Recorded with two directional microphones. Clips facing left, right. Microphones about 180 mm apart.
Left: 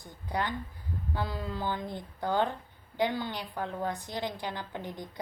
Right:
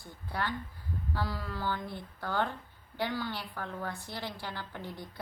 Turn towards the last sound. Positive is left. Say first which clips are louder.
# left 3 dB
turn(degrees=20)  # may be behind; listen again after turning